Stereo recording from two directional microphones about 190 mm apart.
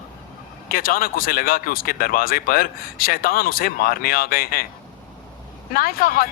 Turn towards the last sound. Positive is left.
turn(degrees=50)  # may be behind; listen again after turning